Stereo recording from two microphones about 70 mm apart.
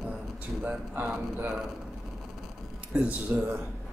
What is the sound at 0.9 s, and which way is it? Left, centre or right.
Speech, right.